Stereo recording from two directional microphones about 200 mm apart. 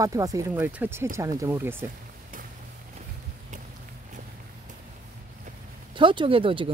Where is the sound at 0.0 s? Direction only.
15° right (ahead or behind).